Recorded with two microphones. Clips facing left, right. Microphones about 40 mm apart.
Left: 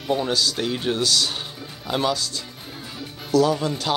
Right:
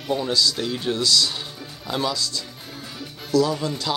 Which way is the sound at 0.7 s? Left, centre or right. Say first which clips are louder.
Left 1 dB; left.